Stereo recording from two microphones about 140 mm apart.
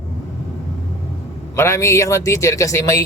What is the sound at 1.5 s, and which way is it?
A man's voice, 20° left (ahead or behind).